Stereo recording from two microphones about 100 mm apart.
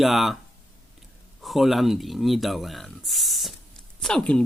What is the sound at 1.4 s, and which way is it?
A man's voice, centre (ahead or behind).